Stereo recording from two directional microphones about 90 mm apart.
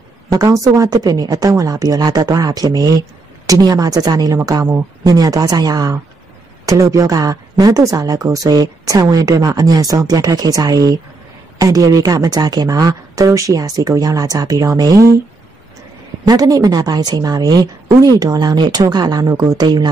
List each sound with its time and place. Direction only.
0.3 s a woman's voice: 40° right (ahead or behind)
16.3 s a woman's voice: 45° right (ahead or behind)